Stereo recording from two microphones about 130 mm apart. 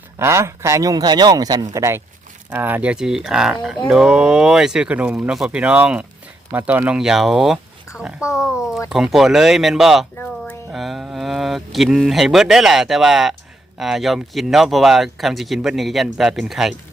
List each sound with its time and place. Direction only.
0.2 s speech: 20° right (ahead or behind); by 10.1 s centre (ahead or behind)
10.2 s music: 15° left (ahead or behind)
10.7 s speech: centre (ahead or behind)